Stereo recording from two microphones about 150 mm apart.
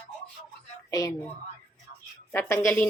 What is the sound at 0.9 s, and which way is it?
Speech, 25° left (ahead or behind).